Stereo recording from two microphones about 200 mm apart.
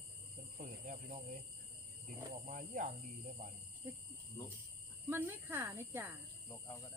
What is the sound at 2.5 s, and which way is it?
Speech, 40° right (ahead or behind).